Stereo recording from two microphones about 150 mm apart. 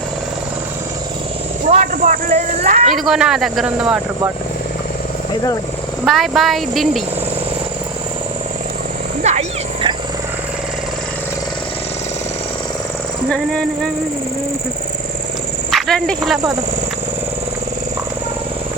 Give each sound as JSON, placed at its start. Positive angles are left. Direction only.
{"t": 1.7, "sound": "speech", "side_deg": -50}
{"t": 2.9, "sound": "speech", "side_deg": 0}
{"t": 6.1, "sound": "speech", "side_deg": 0}
{"t": 9.2, "sound": "speech", "side_deg": -50}
{"t": 13.3, "sound": "speech", "side_deg": 5}
{"t": 15.7, "sound": "speech", "side_deg": 5}